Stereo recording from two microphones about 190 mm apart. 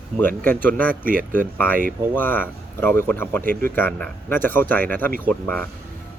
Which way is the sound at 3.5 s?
50° right (ahead or behind).